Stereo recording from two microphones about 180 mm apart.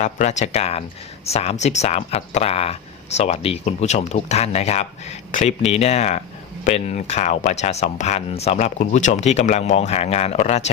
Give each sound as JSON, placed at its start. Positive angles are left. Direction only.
{"t": 0.0, "sound": "speech", "side_deg": 40}